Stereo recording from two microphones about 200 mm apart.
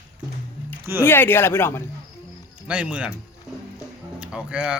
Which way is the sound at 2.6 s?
5° right (ahead or behind).